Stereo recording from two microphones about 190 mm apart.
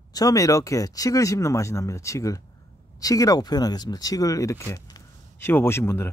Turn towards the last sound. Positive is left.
turn(degrees=15)  # may be behind; listen again after turning